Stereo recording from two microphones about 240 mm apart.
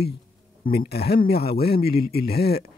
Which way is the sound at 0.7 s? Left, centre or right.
Left.